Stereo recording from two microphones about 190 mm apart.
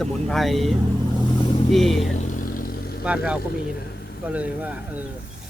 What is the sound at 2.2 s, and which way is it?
Vehicle, 45° left (ahead or behind).